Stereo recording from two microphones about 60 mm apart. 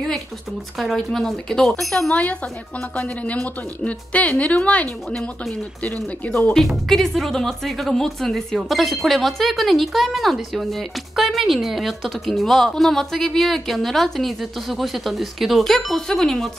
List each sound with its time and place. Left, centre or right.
0.7 s speech: centre
3.3 s speech: left
6.9 s a woman's voice: centre